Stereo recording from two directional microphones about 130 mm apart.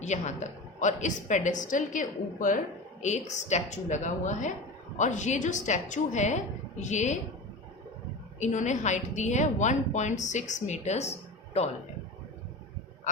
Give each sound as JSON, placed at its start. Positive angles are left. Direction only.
{"t": 0.0, "sound": "a woman's voice", "side_deg": 60}
{"t": 3.0, "sound": "a woman's voice", "side_deg": 65}
{"t": 8.4, "sound": "a woman's voice", "side_deg": 65}